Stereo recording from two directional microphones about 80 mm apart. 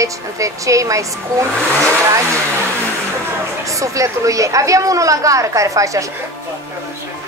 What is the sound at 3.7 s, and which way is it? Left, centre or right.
A woman's voice, right.